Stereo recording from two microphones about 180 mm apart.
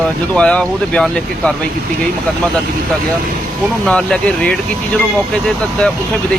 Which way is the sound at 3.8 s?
5° left (ahead or behind).